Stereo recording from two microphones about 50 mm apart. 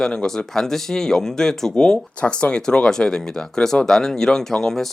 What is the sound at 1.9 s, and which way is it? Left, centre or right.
Speech, left.